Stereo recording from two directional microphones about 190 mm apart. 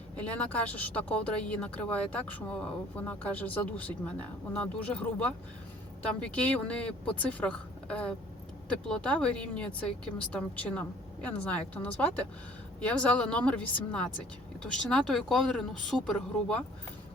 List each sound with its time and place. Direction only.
0.2 s speech: 5° left (ahead or behind)